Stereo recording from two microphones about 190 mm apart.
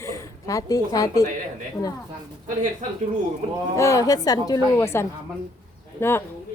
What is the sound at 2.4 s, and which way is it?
Speech, 40° right (ahead or behind).